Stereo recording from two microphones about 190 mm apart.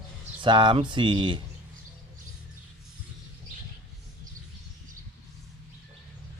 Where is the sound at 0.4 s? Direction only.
25° right (ahead or behind).